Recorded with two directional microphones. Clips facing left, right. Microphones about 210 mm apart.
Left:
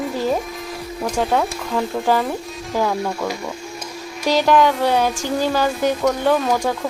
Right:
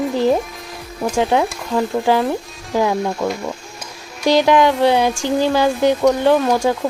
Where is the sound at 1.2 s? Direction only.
15° right (ahead or behind).